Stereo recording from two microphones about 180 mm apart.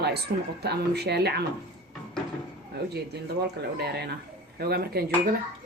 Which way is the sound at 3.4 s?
65° right (ahead or behind).